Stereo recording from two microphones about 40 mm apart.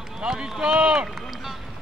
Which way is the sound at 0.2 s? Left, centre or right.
Right.